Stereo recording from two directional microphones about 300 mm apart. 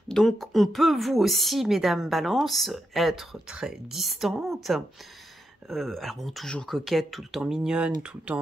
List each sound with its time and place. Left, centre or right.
0.1 s speech: centre